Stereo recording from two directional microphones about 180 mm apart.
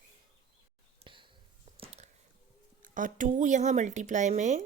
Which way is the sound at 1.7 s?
35° right (ahead or behind).